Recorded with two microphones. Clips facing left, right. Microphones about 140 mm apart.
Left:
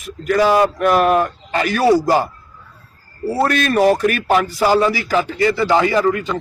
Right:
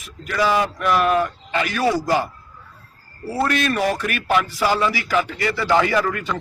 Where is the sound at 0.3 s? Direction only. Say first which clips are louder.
Left 6 dB; 45° left (ahead or behind).